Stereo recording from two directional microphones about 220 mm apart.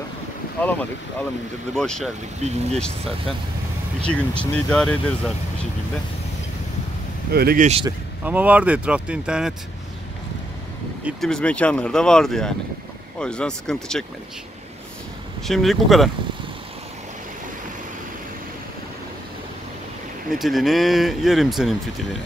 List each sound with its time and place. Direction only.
0.6 s speech: 5° left (ahead or behind)
2.4 s speech: 30° right (ahead or behind)
4.0 s speech: 5° left (ahead or behind)
7.3 s speech: 40° right (ahead or behind)
8.2 s speech: 5° right (ahead or behind)
11.1 s speech: centre (ahead or behind)
15.4 s speech: centre (ahead or behind)
20.3 s speech: centre (ahead or behind)